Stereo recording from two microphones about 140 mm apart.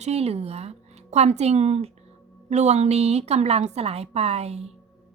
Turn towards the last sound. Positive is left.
turn(degrees=-50)  # may be behind; listen again after turning